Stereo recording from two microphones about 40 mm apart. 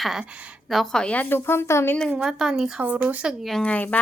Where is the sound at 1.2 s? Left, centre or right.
Left.